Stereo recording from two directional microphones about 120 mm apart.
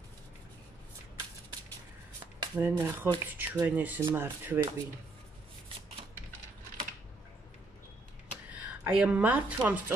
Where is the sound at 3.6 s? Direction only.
15° right (ahead or behind).